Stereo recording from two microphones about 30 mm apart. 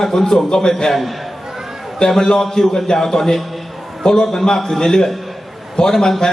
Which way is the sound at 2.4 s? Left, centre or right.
Centre.